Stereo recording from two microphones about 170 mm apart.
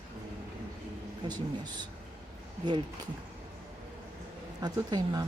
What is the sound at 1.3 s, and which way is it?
Speech, 25° right (ahead or behind).